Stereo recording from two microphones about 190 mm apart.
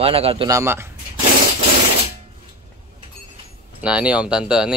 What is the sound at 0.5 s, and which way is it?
Speech, 15° right (ahead or behind).